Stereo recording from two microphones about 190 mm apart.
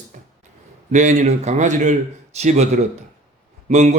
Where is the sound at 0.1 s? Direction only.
45° right (ahead or behind).